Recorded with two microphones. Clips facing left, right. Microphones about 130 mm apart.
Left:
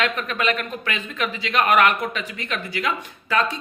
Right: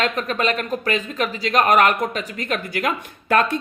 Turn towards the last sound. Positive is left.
turn(degrees=-55)  # may be behind; listen again after turning